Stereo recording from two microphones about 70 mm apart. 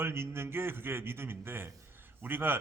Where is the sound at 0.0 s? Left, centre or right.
Right.